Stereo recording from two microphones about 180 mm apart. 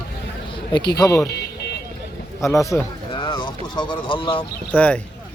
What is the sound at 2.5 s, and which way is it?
A man's voice, 15° left (ahead or behind).